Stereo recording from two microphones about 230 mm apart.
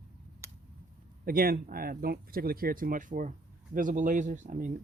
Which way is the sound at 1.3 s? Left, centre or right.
Right.